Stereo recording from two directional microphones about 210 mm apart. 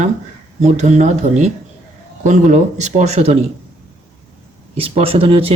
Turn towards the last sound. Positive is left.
turn(degrees=-25)  # may be behind; listen again after turning